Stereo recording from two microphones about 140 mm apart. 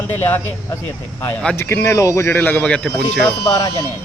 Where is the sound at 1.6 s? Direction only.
20° left (ahead or behind).